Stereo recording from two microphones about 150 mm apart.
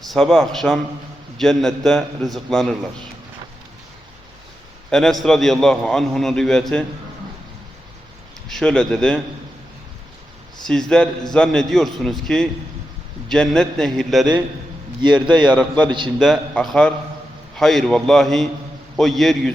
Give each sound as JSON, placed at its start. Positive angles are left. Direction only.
{"t": 0.0, "sound": "a man's voice", "side_deg": 0}
{"t": 4.9, "sound": "a man's voice", "side_deg": 5}
{"t": 8.4, "sound": "a man's voice", "side_deg": 5}
{"t": 10.7, "sound": "a man's voice", "side_deg": 5}
{"t": 15.0, "sound": "a man's voice", "side_deg": -30}
{"t": 16.1, "sound": "a man's voice", "side_deg": 0}